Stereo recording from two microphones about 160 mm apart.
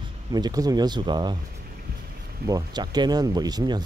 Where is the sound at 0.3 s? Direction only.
25° right (ahead or behind).